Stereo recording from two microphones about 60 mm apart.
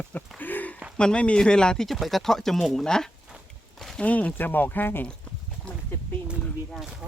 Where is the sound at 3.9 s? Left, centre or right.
Left.